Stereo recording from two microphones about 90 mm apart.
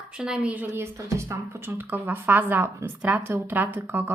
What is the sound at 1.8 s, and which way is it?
Speech, 20° right (ahead or behind).